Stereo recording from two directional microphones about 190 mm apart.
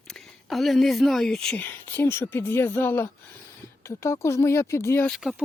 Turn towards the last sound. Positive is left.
turn(degrees=0)  # may be behind; listen again after turning